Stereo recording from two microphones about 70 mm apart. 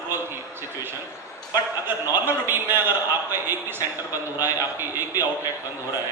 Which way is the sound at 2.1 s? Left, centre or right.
Right.